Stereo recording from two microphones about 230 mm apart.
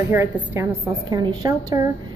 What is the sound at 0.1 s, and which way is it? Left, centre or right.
A woman's voice, centre.